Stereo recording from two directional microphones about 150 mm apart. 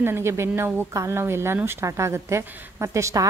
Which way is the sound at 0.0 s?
15° right (ahead or behind).